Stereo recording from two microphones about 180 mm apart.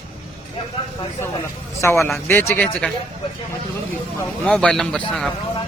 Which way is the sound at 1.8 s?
15° left (ahead or behind).